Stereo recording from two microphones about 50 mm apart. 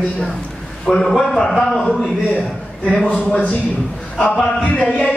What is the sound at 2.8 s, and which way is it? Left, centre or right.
A man's voice, centre.